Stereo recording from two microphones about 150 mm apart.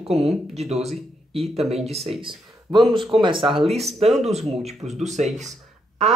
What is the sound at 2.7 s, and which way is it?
Speech, 30° right (ahead or behind).